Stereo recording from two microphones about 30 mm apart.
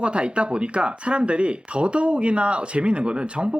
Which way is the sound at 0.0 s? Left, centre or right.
Right.